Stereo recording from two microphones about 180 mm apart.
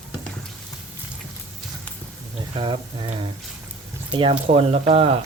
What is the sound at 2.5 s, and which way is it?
Speech, 30° right (ahead or behind).